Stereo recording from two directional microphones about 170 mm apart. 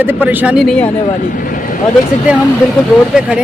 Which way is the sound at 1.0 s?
55° left (ahead or behind).